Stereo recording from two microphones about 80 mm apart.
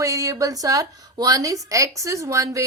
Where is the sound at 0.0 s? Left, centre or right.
Right.